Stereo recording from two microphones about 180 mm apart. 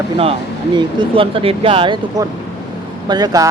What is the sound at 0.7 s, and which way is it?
Speech, 30° right (ahead or behind).